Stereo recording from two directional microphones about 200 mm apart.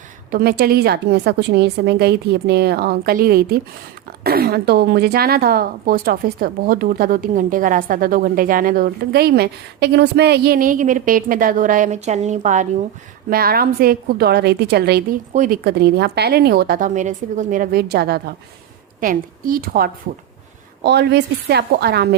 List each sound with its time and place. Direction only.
0.3 s a woman's voice: 50° right (ahead or behind)
13.3 s a woman's voice: 50° right (ahead or behind)
15.3 s a woman's voice: 40° right (ahead or behind)
15.6 s a woman's voice: 55° right (ahead or behind)